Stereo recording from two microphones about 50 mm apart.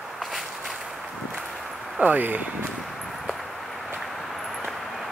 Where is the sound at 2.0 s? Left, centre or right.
Right.